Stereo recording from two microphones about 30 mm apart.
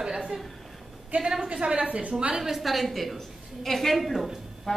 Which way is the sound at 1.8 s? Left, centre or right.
Right.